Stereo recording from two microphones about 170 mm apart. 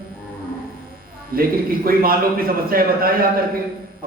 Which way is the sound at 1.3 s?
60° right (ahead or behind).